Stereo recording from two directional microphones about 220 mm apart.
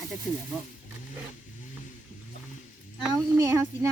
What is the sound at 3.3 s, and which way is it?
Speech, 15° right (ahead or behind).